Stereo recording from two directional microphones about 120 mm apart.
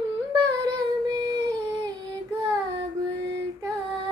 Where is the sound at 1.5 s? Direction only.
30° right (ahead or behind).